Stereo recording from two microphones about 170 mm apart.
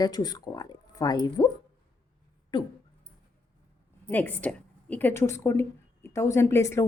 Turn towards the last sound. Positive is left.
turn(degrees=15)  # may be behind; listen again after turning